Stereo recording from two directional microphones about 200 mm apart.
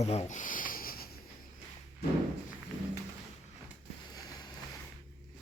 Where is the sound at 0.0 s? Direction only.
35° left (ahead or behind).